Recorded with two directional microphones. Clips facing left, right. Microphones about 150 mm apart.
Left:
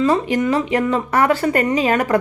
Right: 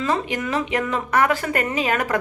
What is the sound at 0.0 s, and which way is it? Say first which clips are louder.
A woman's voice: left 7 dB; 35° left (ahead or behind).